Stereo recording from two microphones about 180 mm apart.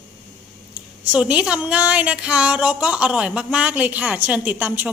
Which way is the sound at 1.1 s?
5° right (ahead or behind).